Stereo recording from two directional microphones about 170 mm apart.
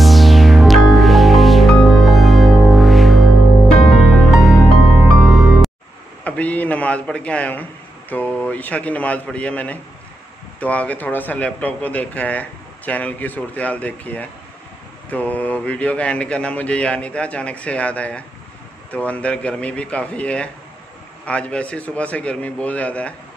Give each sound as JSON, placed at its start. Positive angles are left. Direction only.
{"t": 0.0, "sound": "music", "side_deg": 0}
{"t": 6.2, "sound": "a sound", "side_deg": 10}
{"t": 8.1, "sound": "a man's voice", "side_deg": 10}